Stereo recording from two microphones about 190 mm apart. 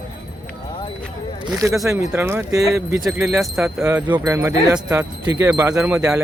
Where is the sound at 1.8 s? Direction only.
15° right (ahead or behind).